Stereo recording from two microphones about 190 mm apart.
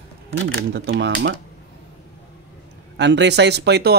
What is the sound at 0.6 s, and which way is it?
Speech, 60° right (ahead or behind).